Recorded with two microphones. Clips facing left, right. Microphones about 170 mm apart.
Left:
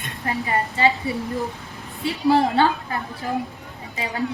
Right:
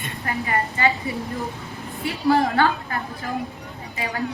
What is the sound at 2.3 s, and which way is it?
Speech, 25° left (ahead or behind).